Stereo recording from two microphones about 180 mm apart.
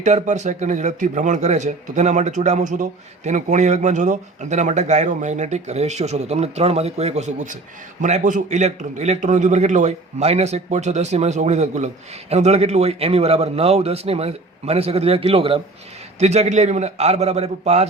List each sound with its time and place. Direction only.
0.0 s speech: 40° right (ahead or behind)